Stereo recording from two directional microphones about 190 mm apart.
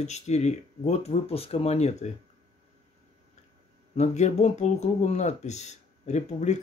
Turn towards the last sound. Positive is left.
turn(degrees=35)  # may be behind; listen again after turning